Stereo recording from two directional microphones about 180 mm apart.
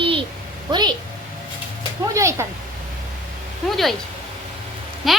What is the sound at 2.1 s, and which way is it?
Speech, 15° right (ahead or behind).